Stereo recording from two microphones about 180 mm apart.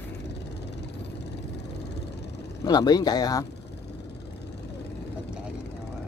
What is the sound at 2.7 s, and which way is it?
Speech, 20° left (ahead or behind).